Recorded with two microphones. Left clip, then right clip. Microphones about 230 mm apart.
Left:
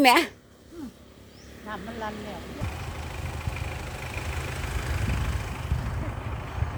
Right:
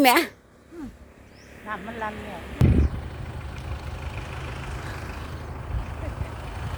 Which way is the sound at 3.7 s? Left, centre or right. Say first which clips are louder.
Left 2 dB; left.